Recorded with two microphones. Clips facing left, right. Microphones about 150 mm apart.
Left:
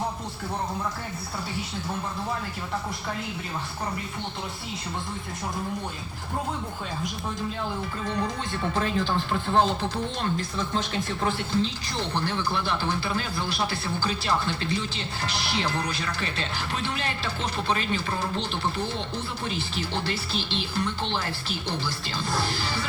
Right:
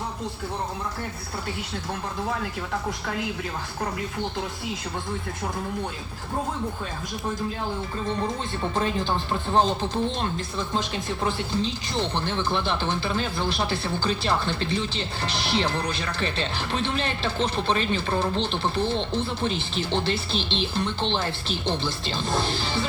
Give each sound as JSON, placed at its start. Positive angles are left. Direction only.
{"t": 8.8, "sound": "speech", "side_deg": -20}